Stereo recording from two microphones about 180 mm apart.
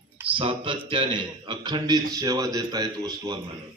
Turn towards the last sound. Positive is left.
turn(degrees=-20)  # may be behind; listen again after turning